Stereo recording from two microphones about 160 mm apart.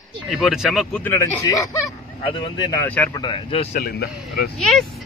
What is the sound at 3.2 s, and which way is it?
Speech, 35° left (ahead or behind).